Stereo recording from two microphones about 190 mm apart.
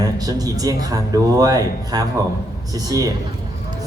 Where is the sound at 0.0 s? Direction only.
20° right (ahead or behind).